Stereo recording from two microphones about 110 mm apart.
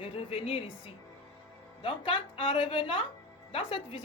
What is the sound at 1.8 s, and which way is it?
A woman's voice, 50° left (ahead or behind).